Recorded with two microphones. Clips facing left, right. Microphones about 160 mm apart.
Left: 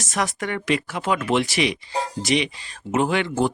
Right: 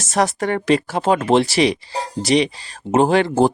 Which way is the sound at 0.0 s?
30° right (ahead or behind).